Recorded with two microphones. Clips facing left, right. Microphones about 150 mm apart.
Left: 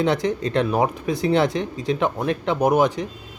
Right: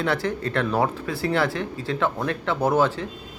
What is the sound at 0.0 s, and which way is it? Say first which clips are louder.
Speech: left 4 dB; 20° left (ahead or behind).